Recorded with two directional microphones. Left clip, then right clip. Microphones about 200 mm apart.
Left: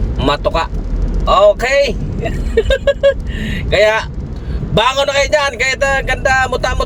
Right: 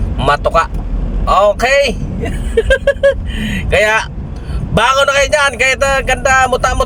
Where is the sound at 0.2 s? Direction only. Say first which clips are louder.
Right 3 dB; centre (ahead or behind).